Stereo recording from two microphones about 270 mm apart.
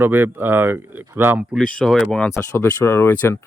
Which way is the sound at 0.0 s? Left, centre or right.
Centre.